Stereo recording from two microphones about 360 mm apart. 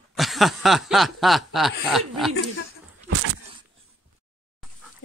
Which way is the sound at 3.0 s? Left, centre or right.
Right.